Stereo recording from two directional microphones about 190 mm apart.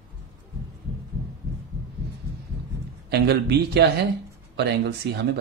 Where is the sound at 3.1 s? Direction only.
60° right (ahead or behind).